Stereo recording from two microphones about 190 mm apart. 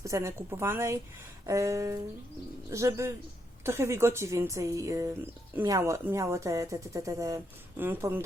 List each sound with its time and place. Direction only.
0.0 s speech: 15° right (ahead or behind)